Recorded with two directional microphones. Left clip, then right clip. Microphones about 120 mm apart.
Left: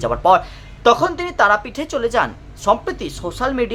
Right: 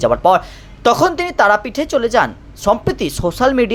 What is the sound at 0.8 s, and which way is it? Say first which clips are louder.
Speech: right 2 dB; 40° right (ahead or behind).